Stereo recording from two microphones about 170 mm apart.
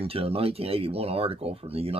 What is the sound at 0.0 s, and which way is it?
Speech, 35° right (ahead or behind).